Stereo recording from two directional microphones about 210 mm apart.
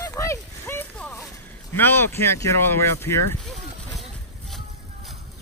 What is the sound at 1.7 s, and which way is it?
Speech, 10° left (ahead or behind).